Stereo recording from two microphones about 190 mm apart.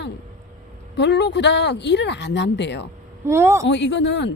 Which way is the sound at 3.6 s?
70° left (ahead or behind).